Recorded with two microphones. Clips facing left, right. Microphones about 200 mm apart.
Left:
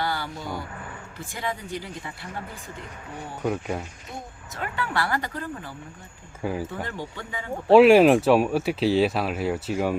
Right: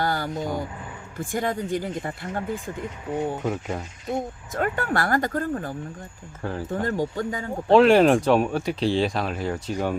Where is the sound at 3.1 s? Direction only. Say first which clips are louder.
Right 6 dB; 20° right (ahead or behind).